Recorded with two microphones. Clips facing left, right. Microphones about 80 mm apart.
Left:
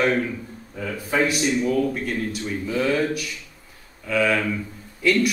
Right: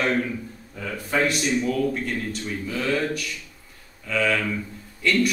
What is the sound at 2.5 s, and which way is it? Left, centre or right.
Speech, left.